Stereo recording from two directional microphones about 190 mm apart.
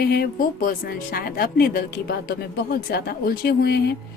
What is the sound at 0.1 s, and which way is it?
A woman's voice, 50° left (ahead or behind).